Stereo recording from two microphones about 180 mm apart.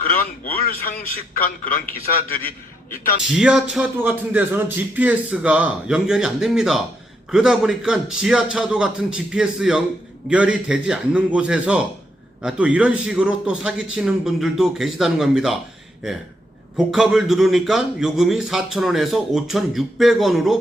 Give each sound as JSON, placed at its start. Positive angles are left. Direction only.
{"t": 0.0, "sound": "a man's voice", "side_deg": 55}
{"t": 3.2, "sound": "a man's voice", "side_deg": -5}
{"t": 16.7, "sound": "a man's voice", "side_deg": -5}